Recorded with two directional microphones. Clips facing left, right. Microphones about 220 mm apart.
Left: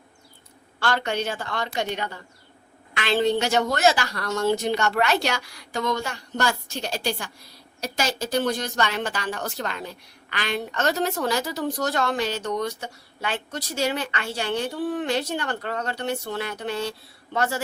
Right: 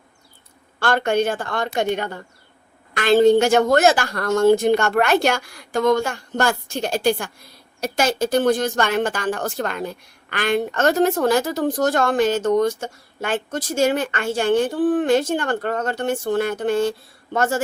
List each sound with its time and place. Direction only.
0.8 s speech: 50° right (ahead or behind)